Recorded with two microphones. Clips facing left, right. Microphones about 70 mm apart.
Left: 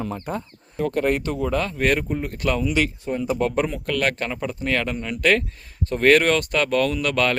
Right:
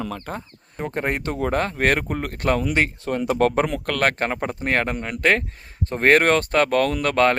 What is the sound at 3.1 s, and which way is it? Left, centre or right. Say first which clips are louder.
Speech: right 3 dB; right.